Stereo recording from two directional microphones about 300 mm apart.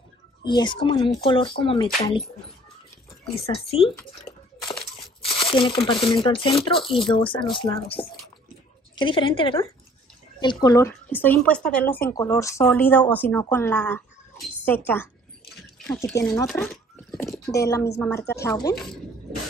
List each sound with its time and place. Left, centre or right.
0.4 s speech: centre
3.4 s speech: centre
4.3 s a sound: centre
5.2 s speech: centre
15.9 s speech: centre